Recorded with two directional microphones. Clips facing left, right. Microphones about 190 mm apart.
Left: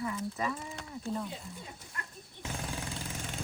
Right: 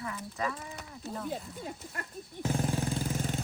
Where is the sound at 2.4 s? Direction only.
40° right (ahead or behind).